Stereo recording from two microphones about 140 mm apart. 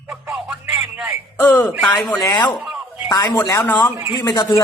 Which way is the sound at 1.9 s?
30° left (ahead or behind).